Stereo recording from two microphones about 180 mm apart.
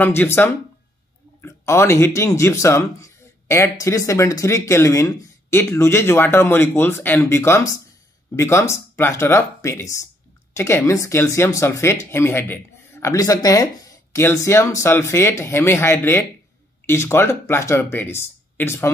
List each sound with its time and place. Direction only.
0.0 s speech: 10° left (ahead or behind)